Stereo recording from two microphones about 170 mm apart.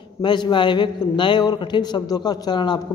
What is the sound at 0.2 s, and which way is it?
A man's voice, 25° left (ahead or behind).